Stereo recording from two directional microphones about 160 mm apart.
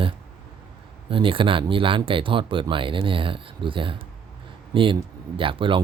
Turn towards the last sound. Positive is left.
turn(degrees=-35)  # may be behind; listen again after turning